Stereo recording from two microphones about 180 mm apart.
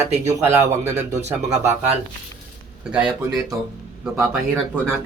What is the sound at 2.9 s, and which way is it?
Speech, 5° right (ahead or behind).